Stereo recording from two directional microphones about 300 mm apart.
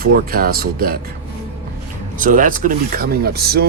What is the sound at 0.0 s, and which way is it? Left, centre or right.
Speech, right.